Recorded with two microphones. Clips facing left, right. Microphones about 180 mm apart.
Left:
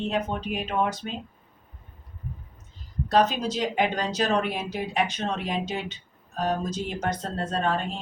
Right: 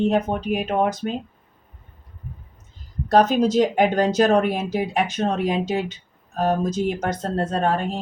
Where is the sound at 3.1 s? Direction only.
45° right (ahead or behind).